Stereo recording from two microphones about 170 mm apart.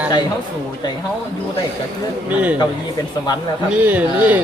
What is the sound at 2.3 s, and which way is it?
Speech, 10° right (ahead or behind).